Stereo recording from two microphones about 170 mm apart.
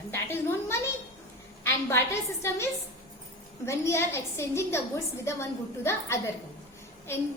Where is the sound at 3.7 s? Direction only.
15° left (ahead or behind).